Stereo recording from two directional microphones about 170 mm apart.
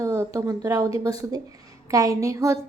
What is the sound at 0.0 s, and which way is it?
A woman's voice, 15° right (ahead or behind).